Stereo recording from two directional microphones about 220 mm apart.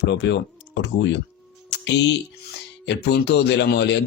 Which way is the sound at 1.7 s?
50° left (ahead or behind).